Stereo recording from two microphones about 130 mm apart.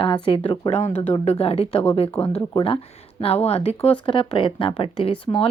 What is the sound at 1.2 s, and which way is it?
Speech, 55° left (ahead or behind).